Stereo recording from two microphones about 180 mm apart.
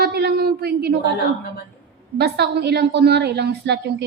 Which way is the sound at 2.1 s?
65° right (ahead or behind).